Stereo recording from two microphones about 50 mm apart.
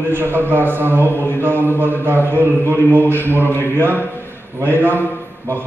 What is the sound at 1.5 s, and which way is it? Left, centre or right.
Speech, left.